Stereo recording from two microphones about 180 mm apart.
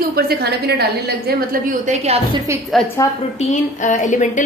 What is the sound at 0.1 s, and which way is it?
A woman's voice, 60° right (ahead or behind).